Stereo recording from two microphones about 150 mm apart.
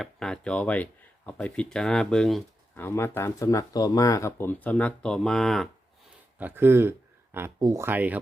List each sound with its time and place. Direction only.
0.0 s speech: 5° left (ahead or behind)
2.7 s speech: 15° left (ahead or behind)
6.4 s speech: 15° right (ahead or behind)